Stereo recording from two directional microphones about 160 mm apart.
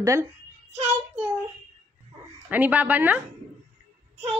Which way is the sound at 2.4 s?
10° right (ahead or behind).